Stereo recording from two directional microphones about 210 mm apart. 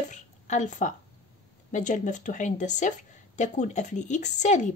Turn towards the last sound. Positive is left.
turn(degrees=35)  # may be behind; listen again after turning